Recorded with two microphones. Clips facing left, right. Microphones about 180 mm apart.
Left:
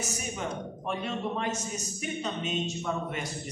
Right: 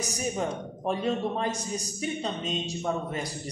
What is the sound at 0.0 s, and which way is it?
A man's voice, 35° right (ahead or behind).